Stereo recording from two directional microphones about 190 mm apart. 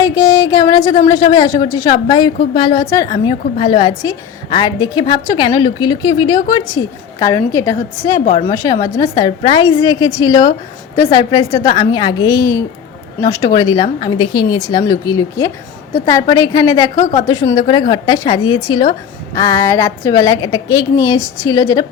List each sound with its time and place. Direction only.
0.0 s a woman's voice: 20° left (ahead or behind)
16.9 s a woman's voice: 40° left (ahead or behind)
17.2 s a woman's voice: 20° left (ahead or behind)